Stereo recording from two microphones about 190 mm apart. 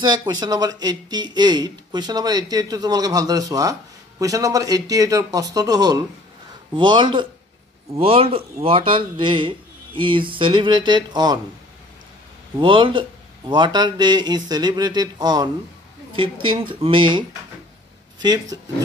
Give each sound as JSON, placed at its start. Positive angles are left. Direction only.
{"t": 0.0, "sound": "speech", "side_deg": -20}
{"t": 12.5, "sound": "speech", "side_deg": -25}
{"t": 18.2, "sound": "speech", "side_deg": -20}